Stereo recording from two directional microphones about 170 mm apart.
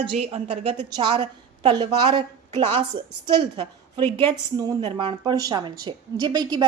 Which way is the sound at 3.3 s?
30° right (ahead or behind).